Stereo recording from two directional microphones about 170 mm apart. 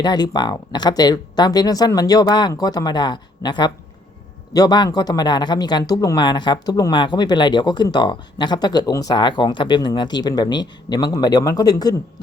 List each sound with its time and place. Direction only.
0.0 s speech: 25° left (ahead or behind)